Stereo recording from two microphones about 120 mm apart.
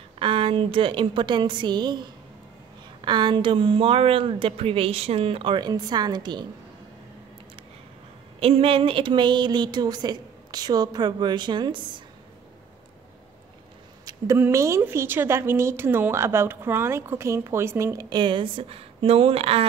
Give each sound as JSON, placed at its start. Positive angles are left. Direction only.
{"t": 0.2, "sound": "speech", "side_deg": -45}
{"t": 8.4, "sound": "a woman's voice", "side_deg": -55}
{"t": 14.0, "sound": "speech", "side_deg": -25}
{"t": 18.1, "sound": "speech", "side_deg": -40}